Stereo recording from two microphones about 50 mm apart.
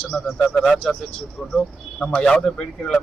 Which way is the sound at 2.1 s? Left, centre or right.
Centre.